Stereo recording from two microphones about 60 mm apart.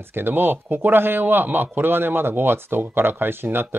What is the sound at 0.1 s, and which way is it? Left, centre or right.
Speech, right.